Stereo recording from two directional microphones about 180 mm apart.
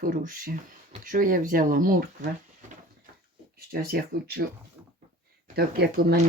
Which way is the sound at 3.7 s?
60° right (ahead or behind).